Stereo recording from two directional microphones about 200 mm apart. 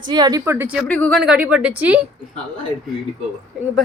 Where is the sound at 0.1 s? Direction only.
20° right (ahead or behind).